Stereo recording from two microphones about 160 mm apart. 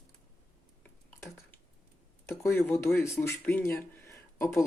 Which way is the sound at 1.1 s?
15° left (ahead or behind).